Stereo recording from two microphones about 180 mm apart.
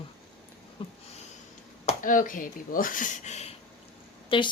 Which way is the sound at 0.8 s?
30° left (ahead or behind).